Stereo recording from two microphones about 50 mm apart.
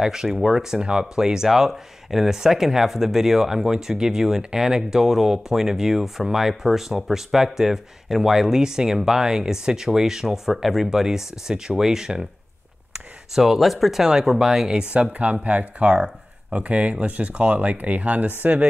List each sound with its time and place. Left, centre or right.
0.0 s speech: centre
13.3 s speech: centre
14.8 s speech: right